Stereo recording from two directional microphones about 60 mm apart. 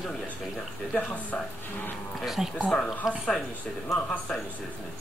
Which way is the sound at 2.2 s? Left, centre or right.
Centre.